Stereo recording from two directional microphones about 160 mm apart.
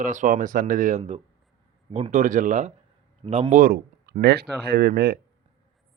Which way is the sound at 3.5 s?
60° right (ahead or behind).